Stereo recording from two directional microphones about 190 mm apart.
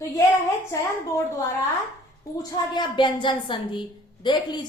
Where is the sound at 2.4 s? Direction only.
25° left (ahead or behind).